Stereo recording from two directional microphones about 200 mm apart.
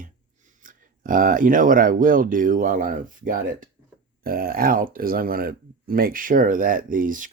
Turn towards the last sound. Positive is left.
turn(degrees=-40)  # may be behind; listen again after turning